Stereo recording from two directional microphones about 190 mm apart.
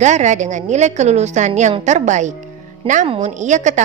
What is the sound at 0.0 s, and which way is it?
A woman's voice, 40° right (ahead or behind).